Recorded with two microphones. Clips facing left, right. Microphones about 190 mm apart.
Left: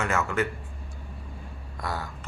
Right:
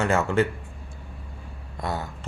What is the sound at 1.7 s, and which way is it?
Speech, 25° right (ahead or behind).